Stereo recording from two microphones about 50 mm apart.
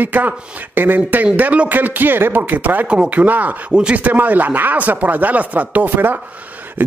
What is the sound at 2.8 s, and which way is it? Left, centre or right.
Speech, right.